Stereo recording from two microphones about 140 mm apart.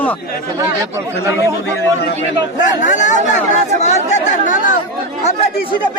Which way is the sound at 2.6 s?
65° left (ahead or behind).